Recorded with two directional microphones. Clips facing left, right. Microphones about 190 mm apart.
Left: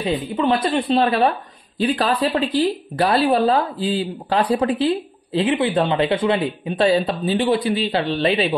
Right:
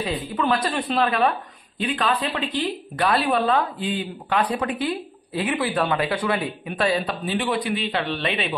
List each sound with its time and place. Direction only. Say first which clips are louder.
0.0 s speech: left 4 dB; 25° left (ahead or behind)